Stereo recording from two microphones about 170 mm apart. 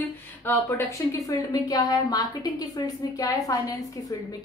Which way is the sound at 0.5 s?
15° left (ahead or behind).